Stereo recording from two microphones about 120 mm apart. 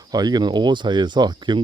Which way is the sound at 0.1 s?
35° right (ahead or behind).